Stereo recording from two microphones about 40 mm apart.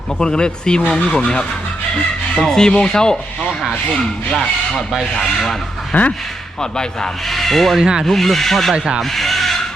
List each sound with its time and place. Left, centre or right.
0.2 s speech: centre
5.9 s speech: left
6.6 s speech: centre
7.3 s speech: centre
7.8 s speech: centre
8.0 s speech: centre
9.0 s rub: centre